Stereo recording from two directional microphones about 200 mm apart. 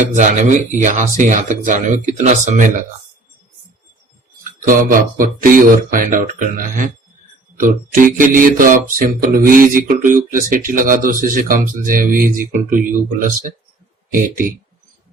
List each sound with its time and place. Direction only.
0.1 s speech: 40° right (ahead or behind)
4.4 s mantra: 45° right (ahead or behind)
12.4 s speech: 40° right (ahead or behind)